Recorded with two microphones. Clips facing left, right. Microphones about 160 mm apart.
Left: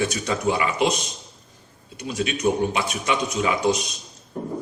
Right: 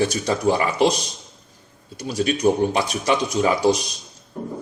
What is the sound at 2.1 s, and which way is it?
Speech, 35° right (ahead or behind).